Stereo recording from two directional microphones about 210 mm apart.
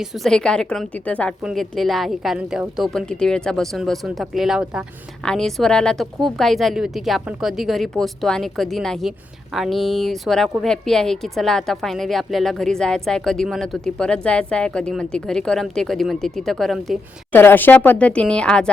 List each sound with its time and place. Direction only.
0.0 s a woman's voice: centre (ahead or behind)